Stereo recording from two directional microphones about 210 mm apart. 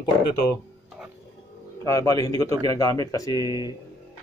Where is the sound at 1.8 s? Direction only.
15° left (ahead or behind).